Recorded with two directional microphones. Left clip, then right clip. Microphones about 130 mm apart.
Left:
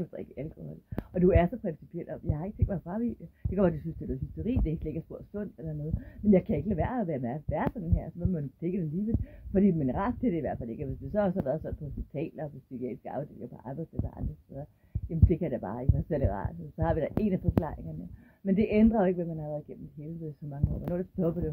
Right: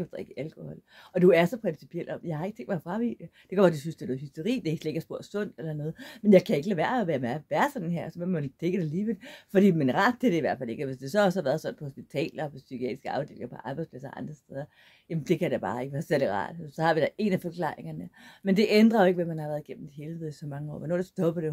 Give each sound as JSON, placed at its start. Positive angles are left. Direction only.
{"t": 0.0, "sound": "speech", "side_deg": -35}
{"t": 6.2, "sound": "speech", "side_deg": -35}
{"t": 15.0, "sound": "a woman's voice", "side_deg": -30}